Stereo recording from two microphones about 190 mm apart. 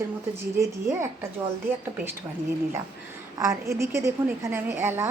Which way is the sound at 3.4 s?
15° right (ahead or behind).